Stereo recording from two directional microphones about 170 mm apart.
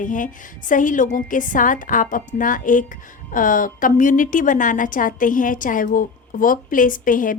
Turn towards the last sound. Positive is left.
turn(degrees=55)  # may be behind; listen again after turning